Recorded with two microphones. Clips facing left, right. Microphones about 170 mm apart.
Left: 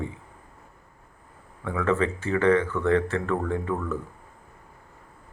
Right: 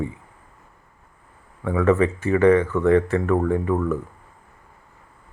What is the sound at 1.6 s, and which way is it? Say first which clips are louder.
Speech: right 6 dB; 20° right (ahead or behind).